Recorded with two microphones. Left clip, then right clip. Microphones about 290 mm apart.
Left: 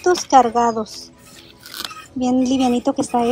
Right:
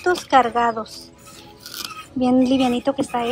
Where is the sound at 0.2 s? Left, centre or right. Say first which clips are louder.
Left 3 dB; centre.